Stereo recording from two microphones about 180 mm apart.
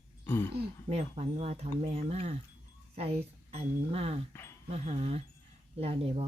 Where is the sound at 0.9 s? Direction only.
35° right (ahead or behind).